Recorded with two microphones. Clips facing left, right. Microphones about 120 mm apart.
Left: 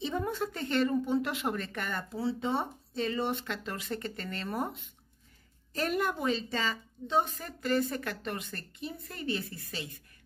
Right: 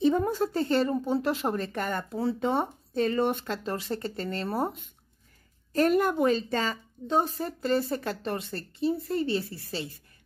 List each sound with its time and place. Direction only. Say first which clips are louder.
0.0 s a woman's voice: right 8 dB; 45° right (ahead or behind)
3.4 s a woman's voice: right 5 dB; 35° right (ahead or behind)
5.7 s a woman's voice: right 8 dB; 45° right (ahead or behind); by 9.8 s 30° right (ahead or behind)